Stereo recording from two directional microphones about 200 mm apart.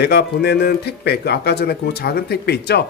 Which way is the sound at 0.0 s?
55° left (ahead or behind).